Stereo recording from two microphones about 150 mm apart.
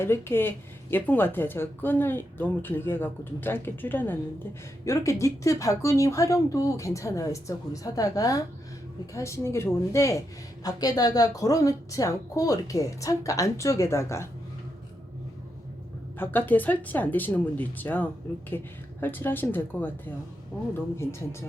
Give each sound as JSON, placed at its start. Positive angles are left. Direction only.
{"t": 0.0, "sound": "a woman's voice", "side_deg": 15}
{"t": 16.1, "sound": "speech", "side_deg": 15}